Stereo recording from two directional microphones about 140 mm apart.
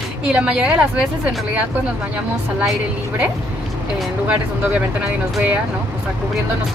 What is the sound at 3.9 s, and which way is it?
Speech, 10° right (ahead or behind).